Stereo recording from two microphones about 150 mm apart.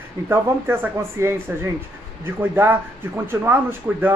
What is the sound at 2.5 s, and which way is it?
Speech, 15° right (ahead or behind).